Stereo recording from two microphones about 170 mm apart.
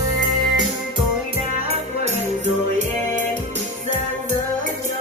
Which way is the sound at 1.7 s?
40° right (ahead or behind).